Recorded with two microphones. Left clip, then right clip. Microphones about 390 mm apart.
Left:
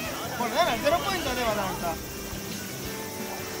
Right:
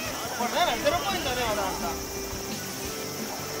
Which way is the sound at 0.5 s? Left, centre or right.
Centre.